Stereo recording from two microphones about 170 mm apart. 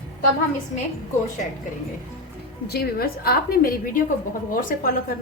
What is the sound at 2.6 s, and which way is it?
A woman's voice, 70° left (ahead or behind).